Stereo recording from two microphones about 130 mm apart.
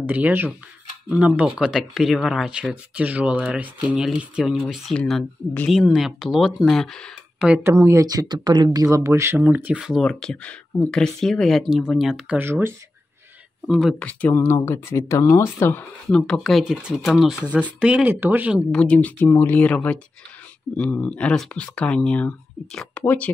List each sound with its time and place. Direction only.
0.0 s speech: 15° right (ahead or behind); by 7.4 s 5° left (ahead or behind)
7.4 s speech: 10° right (ahead or behind)
7.7 s speech: 25° right (ahead or behind); by 10.0 s 5° right (ahead or behind)
10.0 s speech: 5° left (ahead or behind)
12.4 s speech: 15° right (ahead or behind)
13.7 s speech: 5° right (ahead or behind)
13.9 s speech: 10° left (ahead or behind)
16.1 s speech: 5° left (ahead or behind)
17.5 s speech: 10° left (ahead or behind)
17.7 s speech: 10° right (ahead or behind)
18.7 s speech: 10° left (ahead or behind)